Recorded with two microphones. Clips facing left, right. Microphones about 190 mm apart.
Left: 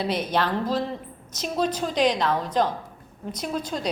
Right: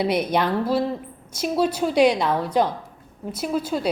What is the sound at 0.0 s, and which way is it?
A woman's voice, 10° right (ahead or behind).